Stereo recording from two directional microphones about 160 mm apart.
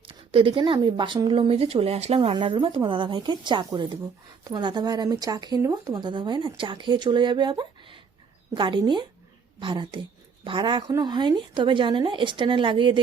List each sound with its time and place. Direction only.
0.1 s speech: 35° right (ahead or behind)